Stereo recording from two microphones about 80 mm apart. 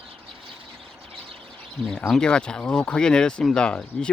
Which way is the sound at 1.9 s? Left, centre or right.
Centre.